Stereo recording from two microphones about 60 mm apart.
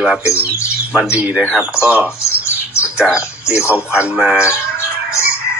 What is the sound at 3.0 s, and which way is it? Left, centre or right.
Speech, centre.